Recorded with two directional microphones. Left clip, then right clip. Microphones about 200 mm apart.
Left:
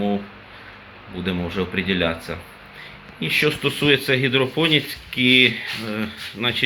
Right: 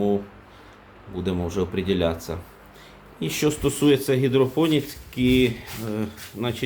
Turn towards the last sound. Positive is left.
turn(degrees=-20)  # may be behind; listen again after turning